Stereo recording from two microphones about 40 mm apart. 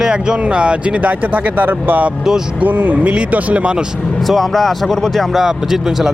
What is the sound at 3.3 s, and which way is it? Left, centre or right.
Speech, right.